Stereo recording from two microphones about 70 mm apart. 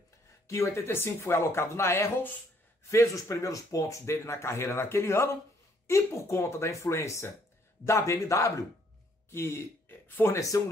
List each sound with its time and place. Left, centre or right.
0.5 s speech: left
9.3 s speech: left
10.3 s speech: left